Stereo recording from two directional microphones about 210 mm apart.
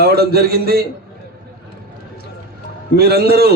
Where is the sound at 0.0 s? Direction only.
50° right (ahead or behind).